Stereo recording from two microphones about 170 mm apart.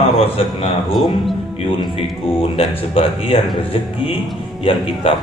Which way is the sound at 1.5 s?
35° left (ahead or behind).